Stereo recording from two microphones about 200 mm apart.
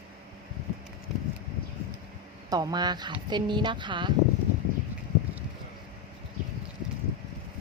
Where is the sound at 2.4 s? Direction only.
20° right (ahead or behind).